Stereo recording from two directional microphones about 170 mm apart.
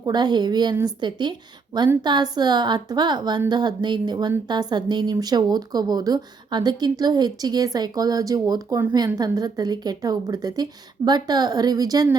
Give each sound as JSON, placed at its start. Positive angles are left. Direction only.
{"t": 0.0, "sound": "a woman's voice", "side_deg": -25}